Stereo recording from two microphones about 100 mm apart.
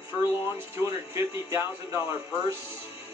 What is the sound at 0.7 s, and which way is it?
A man's voice, 30° right (ahead or behind).